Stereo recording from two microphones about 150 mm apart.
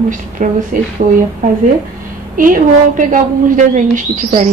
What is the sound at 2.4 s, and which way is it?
A woman's voice, 65° right (ahead or behind).